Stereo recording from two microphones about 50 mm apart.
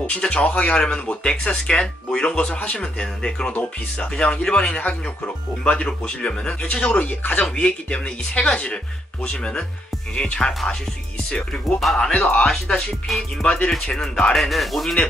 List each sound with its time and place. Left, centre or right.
0.0 s speech: left
7.5 s speech: left
11.8 s speech: centre
12.1 s speech: left
14.3 s speech: centre